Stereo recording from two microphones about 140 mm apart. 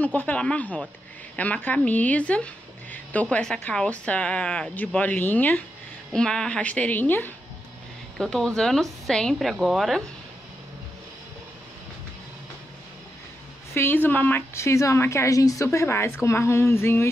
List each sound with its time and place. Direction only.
0.0 s a woman's voice: 10° left (ahead or behind)
13.7 s a woman's voice: 15° left (ahead or behind)